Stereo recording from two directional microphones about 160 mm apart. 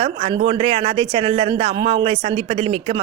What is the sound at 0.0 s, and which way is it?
A woman's voice, 40° right (ahead or behind).